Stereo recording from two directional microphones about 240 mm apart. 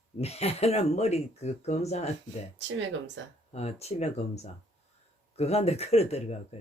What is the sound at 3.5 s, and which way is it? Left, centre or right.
Speech, left.